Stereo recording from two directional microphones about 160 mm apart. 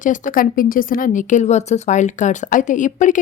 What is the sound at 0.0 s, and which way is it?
Speech, 55° left (ahead or behind).